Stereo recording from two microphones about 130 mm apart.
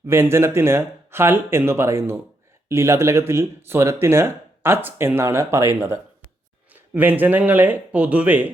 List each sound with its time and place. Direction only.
0.1 s speech: 20° right (ahead or behind)